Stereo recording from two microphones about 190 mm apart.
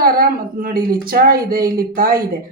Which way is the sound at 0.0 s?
50° right (ahead or behind).